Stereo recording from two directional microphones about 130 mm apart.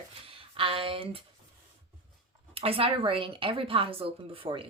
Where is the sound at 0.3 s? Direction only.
45° right (ahead or behind).